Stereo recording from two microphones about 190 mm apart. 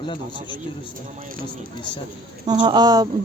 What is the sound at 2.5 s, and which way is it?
Speech, 20° right (ahead or behind).